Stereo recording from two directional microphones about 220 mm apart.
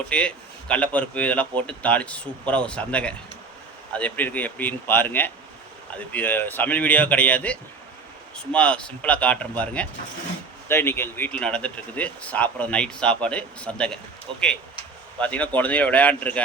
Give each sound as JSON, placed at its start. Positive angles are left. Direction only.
{"t": 0.1, "sound": "speech", "side_deg": 5}
{"t": 14.3, "sound": "speech", "side_deg": -25}
{"t": 15.2, "sound": "speech", "side_deg": 5}